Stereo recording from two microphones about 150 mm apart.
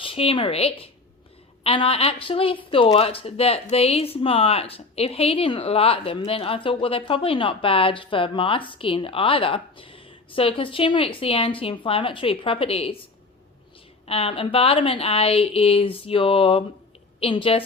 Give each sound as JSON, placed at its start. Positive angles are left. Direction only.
{"t": 0.0, "sound": "a woman's voice", "side_deg": 40}
{"t": 14.1, "sound": "a woman's voice", "side_deg": 40}